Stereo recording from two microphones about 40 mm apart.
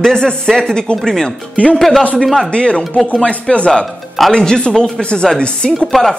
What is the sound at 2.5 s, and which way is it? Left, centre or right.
Speech, left.